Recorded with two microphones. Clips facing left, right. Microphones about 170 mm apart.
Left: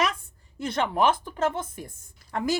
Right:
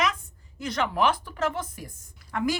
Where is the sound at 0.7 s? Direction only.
50° left (ahead or behind).